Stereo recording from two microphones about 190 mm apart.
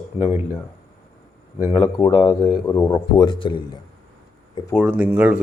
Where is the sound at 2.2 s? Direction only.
15° left (ahead or behind).